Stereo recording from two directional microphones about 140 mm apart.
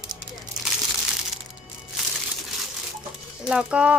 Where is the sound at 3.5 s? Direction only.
5° right (ahead or behind).